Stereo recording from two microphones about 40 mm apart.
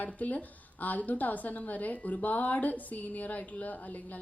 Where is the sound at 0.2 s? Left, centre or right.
Left.